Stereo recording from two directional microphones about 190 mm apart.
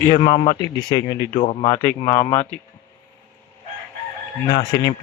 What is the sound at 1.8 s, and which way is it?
Speech, 15° left (ahead or behind).